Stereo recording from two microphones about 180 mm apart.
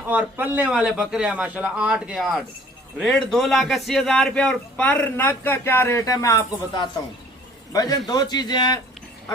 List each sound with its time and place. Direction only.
0.1 s a man's voice: 10° right (ahead or behind); by 8.8 s 25° left (ahead or behind)